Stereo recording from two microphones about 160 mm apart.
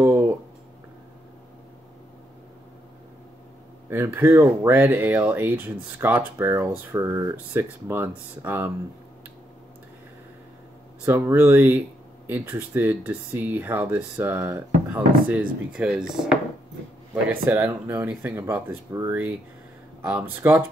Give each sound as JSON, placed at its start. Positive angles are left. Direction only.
{"t": 0.0, "sound": "a sound", "side_deg": -15}
{"t": 3.9, "sound": "speech", "side_deg": -15}
{"t": 11.1, "sound": "speech", "side_deg": -15}
{"t": 20.0, "sound": "speech", "side_deg": -10}